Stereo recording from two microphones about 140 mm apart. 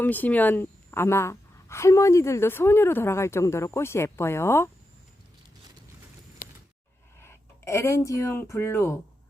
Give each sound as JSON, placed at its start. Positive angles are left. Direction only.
{"t": 0.0, "sound": "a woman's voice", "side_deg": 10}
{"t": 6.4, "sound": "a sound", "side_deg": 80}
{"t": 7.2, "sound": "speech", "side_deg": 20}